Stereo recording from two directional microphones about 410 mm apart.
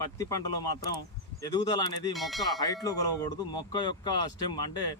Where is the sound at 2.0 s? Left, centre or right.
Centre.